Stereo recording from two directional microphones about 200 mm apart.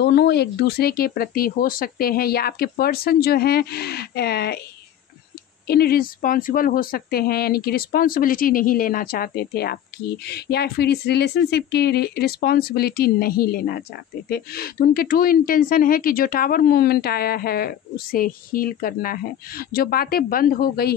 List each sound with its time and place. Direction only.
0.0 s speech: 55° left (ahead or behind)
5.7 s speech: 50° left (ahead or behind)